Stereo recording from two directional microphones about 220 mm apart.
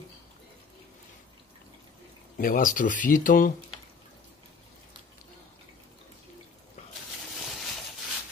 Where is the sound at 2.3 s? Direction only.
40° left (ahead or behind).